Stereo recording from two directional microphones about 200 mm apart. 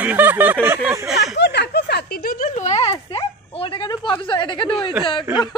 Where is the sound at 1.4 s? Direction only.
55° left (ahead or behind); by 4.9 s 25° left (ahead or behind).